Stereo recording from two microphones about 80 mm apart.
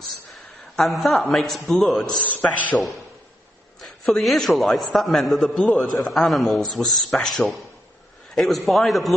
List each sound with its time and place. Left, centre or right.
0.7 s a man's voice: centre
2.2 s a man's voice: centre
3.8 s a man's voice: centre